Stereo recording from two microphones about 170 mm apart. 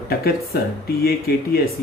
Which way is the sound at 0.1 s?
65° left (ahead or behind).